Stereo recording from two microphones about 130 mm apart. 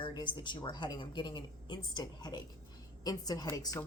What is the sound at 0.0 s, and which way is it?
A woman's voice, 35° left (ahead or behind).